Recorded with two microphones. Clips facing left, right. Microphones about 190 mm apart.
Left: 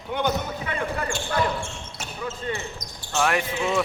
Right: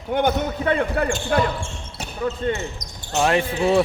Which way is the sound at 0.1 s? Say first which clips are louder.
Right 6 dB; 50° right (ahead or behind).